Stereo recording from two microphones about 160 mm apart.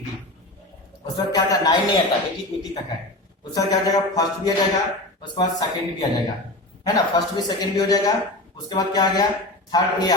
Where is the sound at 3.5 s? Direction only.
25° left (ahead or behind).